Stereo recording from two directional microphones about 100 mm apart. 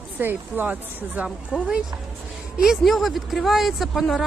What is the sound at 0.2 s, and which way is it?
Speech, 20° right (ahead or behind).